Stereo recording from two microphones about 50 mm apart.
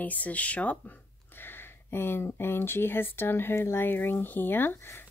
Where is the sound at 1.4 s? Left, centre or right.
Left.